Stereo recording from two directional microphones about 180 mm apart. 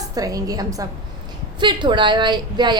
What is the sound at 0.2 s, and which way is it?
A woman's voice, 20° right (ahead or behind).